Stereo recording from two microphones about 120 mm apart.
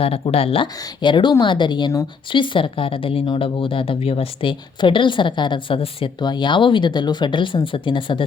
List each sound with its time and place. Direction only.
0.0 s speech: 55° left (ahead or behind)